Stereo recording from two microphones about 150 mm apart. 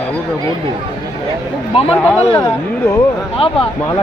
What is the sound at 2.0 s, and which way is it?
Speech, 10° left (ahead or behind).